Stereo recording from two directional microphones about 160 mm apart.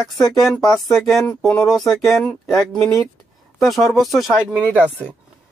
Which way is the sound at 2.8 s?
15° left (ahead or behind).